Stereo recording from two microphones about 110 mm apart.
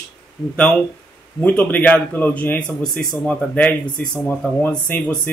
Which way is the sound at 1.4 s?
15° left (ahead or behind).